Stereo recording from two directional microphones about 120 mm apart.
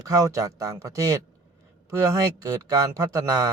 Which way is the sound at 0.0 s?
30° right (ahead or behind).